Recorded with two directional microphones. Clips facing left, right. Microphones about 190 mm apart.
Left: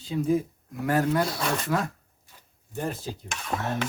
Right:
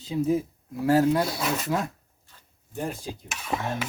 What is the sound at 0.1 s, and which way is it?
Speech, 25° right (ahead or behind).